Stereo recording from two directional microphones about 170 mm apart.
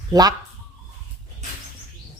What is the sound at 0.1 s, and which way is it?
Speech, 20° right (ahead or behind).